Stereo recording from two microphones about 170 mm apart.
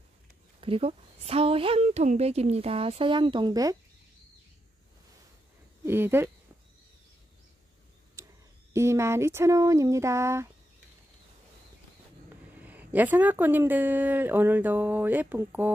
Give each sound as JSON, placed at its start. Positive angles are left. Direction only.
{"t": 0.6, "sound": "a woman's voice", "side_deg": -35}
{"t": 5.9, "sound": "speech", "side_deg": -15}
{"t": 8.2, "sound": "a sound", "side_deg": -15}
{"t": 8.7, "sound": "speech", "side_deg": -15}
{"t": 12.6, "sound": "speech", "side_deg": -10}